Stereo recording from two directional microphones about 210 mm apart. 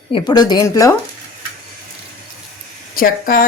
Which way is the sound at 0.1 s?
20° left (ahead or behind).